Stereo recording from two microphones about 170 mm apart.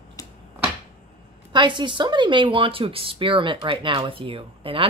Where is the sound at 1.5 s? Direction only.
25° right (ahead or behind).